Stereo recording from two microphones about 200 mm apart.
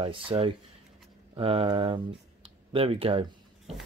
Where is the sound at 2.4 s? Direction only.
30° right (ahead or behind).